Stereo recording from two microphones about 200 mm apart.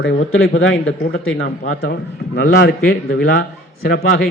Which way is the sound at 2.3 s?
50° left (ahead or behind).